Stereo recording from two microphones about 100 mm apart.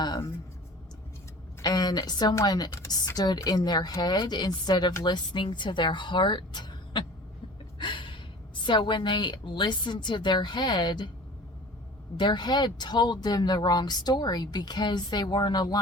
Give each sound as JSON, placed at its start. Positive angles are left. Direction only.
{"t": 0.0, "sound": "speech", "side_deg": 45}
{"t": 1.6, "sound": "speech", "side_deg": 45}
{"t": 7.8, "sound": "gasp", "side_deg": 55}
{"t": 8.6, "sound": "speech", "side_deg": 55}
{"t": 12.1, "sound": "speech", "side_deg": 50}